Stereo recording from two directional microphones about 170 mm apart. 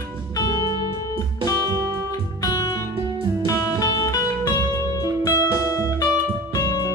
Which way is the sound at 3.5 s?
20° left (ahead or behind).